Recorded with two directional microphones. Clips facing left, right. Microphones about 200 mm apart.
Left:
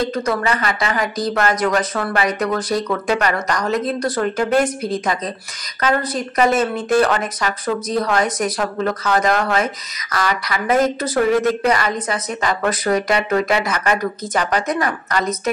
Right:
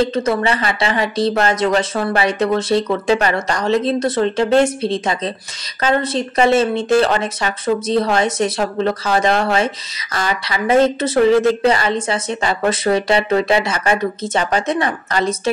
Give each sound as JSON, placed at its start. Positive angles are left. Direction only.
{"t": 0.0, "sound": "speech", "side_deg": -25}